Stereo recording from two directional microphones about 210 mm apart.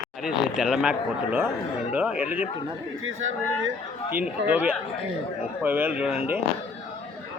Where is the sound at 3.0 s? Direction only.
70° right (ahead or behind).